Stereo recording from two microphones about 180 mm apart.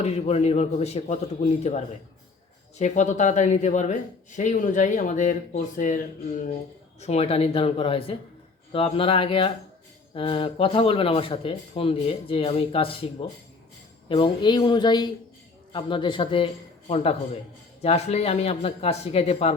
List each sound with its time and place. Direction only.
0.0 s speech: 35° left (ahead or behind)